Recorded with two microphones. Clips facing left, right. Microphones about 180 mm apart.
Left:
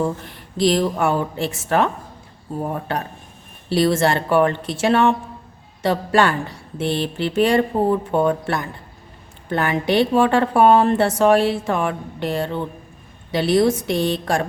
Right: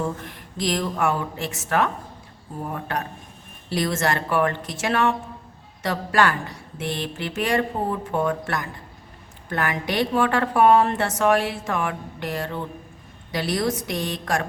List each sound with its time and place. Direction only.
0.0 s speech: 30° left (ahead or behind)
3.7 s a woman's voice: 30° left (ahead or behind)